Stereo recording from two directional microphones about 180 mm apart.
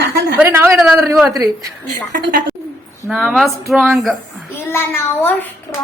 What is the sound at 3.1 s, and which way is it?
Speech, 5° right (ahead or behind).